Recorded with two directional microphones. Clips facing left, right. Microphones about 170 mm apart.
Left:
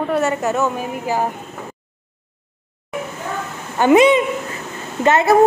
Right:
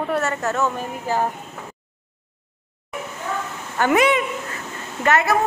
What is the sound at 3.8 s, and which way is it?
A woman's voice, 20° left (ahead or behind).